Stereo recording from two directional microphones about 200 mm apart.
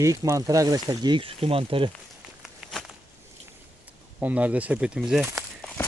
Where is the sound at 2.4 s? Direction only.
Centre (ahead or behind).